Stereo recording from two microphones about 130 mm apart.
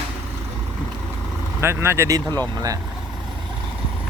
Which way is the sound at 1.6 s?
20° right (ahead or behind).